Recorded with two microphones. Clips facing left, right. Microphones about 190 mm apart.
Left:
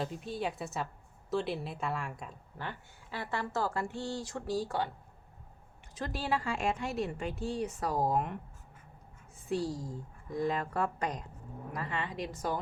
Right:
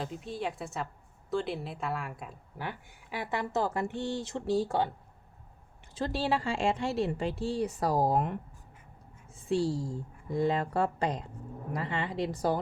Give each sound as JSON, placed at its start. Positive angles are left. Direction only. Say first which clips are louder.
{"t": 0.0, "sound": "a woman's voice", "louder": "even", "side_deg": 0}
{"t": 5.9, "sound": "speech", "louder": "right 4 dB", "side_deg": -30}
{"t": 9.5, "sound": "a woman's voice", "louder": "right 5 dB", "side_deg": -30}